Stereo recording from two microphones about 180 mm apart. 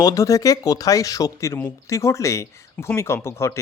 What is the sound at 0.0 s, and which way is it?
Speech, 20° left (ahead or behind).